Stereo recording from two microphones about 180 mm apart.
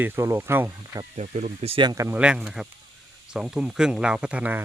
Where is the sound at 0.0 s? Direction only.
15° right (ahead or behind).